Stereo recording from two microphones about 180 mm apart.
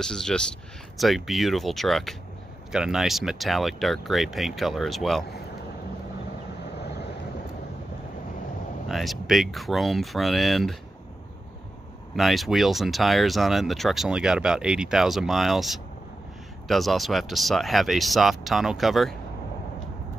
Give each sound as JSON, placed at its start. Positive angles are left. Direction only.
{"t": 0.0, "sound": "speech", "side_deg": 5}
{"t": 6.8, "sound": "vehicle", "side_deg": 70}
{"t": 8.8, "sound": "speech", "side_deg": 0}
{"t": 12.2, "sound": "speech", "side_deg": 0}